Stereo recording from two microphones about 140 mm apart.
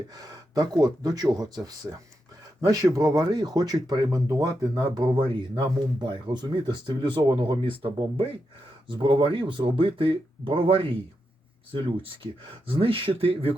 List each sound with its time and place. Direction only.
0.2 s speech: 25° right (ahead or behind)
12.6 s speech: 40° right (ahead or behind)